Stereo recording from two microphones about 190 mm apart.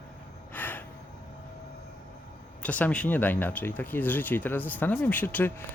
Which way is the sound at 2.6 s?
5° left (ahead or behind).